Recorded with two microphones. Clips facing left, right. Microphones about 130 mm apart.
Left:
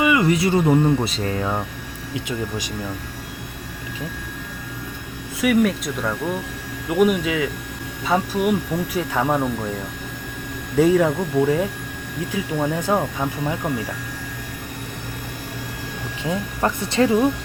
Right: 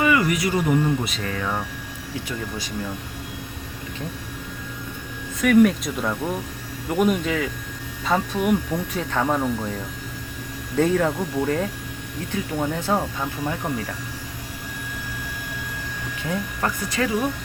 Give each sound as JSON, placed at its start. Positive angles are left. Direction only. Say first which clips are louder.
{"t": 0.0, "sound": "speech", "louder": "left 2 dB", "side_deg": 20}
{"t": 5.4, "sound": "speech", "louder": "right 2 dB", "side_deg": 5}
{"t": 10.8, "sound": "speech", "louder": "left 4 dB", "side_deg": 10}
{"t": 16.3, "sound": "speech", "louder": "left 3 dB", "side_deg": 20}